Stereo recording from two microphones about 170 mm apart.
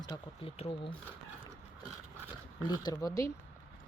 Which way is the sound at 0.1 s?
20° left (ahead or behind).